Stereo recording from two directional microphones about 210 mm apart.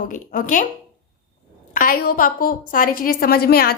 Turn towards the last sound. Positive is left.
turn(degrees=45)  # may be behind; listen again after turning